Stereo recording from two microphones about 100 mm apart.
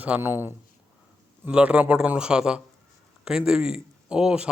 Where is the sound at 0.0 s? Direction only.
20° right (ahead or behind).